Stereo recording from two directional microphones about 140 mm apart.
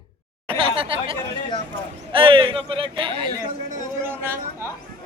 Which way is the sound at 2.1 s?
40° right (ahead or behind).